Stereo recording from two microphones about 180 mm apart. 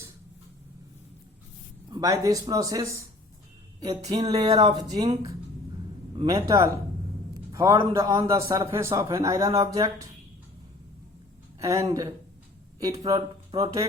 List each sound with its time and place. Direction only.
1.9 s speech: 20° right (ahead or behind)
4.0 s music: 35° right (ahead or behind)
4.3 s speech: 25° right (ahead or behind)
6.2 s a man's voice: 20° right (ahead or behind)
11.6 s speech: 20° right (ahead or behind)